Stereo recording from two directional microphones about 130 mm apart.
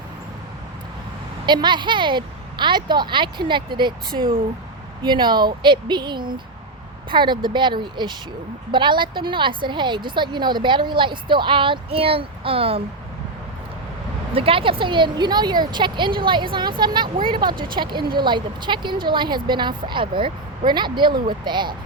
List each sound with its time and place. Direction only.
1.5 s speech: 35° right (ahead or behind)
4.1 s speech: 90° right
5.0 s speech: 35° right (ahead or behind)
14.3 s speech: 45° right (ahead or behind)